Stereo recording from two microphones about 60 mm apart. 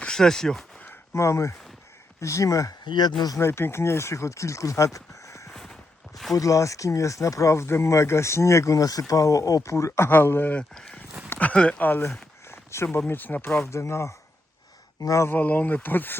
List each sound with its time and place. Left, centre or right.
0.0 s speech: centre
1.1 s speech: left
3.3 s speech: left
5.5 s crow: centre
6.3 s speech: left
10.1 s speech: left
10.5 s speech: centre
11.8 s speech: left
12.5 s a sound: left
13.1 s speech: left
13.7 s speech: left
15.3 s speech: left